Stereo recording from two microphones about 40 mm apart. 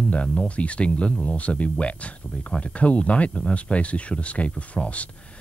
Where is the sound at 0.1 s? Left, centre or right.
Left.